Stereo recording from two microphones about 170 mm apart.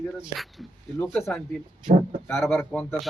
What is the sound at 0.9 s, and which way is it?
A man's voice, 15° left (ahead or behind).